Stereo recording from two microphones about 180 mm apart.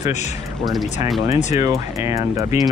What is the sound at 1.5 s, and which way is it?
Speech, 15° right (ahead or behind).